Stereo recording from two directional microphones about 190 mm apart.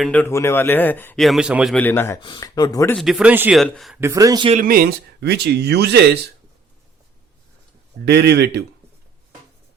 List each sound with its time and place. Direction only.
0.0 s a man's voice: 10° left (ahead or behind)
1.7 s a man's voice: 10° left (ahead or behind)
2.2 s speech: 25° left (ahead or behind)
2.9 s speech: centre (ahead or behind)
4.0 s speech: 15° right (ahead or behind)
4.6 s speech: 50° right (ahead or behind)
8.0 s speech: 60° right (ahead or behind)